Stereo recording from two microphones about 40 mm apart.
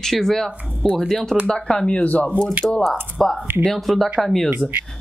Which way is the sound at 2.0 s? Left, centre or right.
Left.